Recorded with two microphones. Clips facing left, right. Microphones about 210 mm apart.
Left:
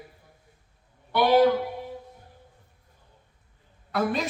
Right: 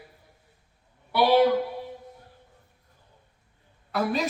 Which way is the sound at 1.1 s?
10° right (ahead or behind).